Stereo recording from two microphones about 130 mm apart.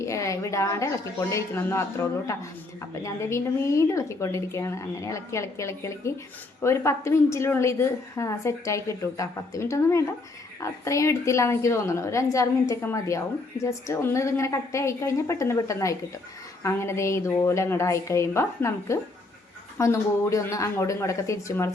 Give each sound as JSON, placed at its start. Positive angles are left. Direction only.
{"t": 0.0, "sound": "a woman's voice", "side_deg": 25}